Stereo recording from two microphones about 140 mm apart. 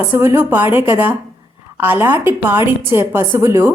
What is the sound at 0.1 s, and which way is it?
A woman's voice, 15° right (ahead or behind).